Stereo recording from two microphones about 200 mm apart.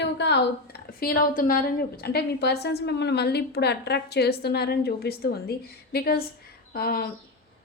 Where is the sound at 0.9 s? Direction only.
45° left (ahead or behind).